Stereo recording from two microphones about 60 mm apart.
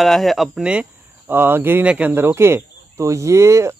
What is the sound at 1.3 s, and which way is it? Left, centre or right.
Speech, right.